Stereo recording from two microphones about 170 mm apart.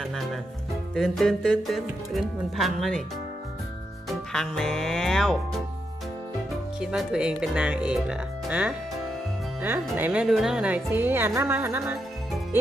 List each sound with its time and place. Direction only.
0.9 s speech: centre (ahead or behind)
4.3 s speech: centre (ahead or behind)
6.7 s speech: 5° right (ahead or behind)